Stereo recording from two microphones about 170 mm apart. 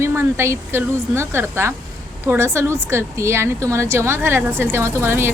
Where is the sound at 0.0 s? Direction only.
15° right (ahead or behind).